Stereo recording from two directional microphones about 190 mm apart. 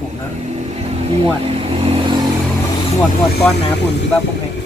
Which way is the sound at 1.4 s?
30° right (ahead or behind).